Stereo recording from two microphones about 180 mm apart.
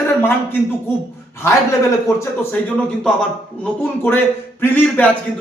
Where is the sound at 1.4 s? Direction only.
15° left (ahead or behind).